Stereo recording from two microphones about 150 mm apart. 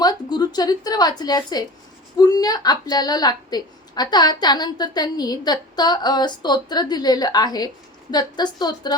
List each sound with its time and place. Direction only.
0.0 s a woman's voice: 25° left (ahead or behind)